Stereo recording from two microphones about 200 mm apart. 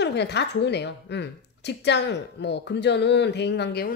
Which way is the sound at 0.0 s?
60° left (ahead or behind).